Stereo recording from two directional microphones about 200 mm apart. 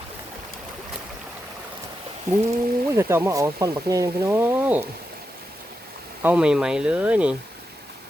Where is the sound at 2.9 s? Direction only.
15° right (ahead or behind).